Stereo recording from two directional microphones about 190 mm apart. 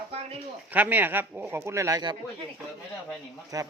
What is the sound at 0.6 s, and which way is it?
Speech, 10° right (ahead or behind).